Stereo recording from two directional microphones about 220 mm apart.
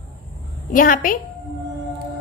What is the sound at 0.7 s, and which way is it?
Speech, 40° left (ahead or behind).